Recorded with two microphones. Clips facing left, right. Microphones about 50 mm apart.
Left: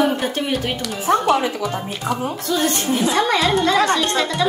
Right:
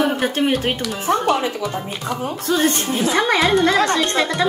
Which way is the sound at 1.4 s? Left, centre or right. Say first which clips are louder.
Left 1 dB; centre.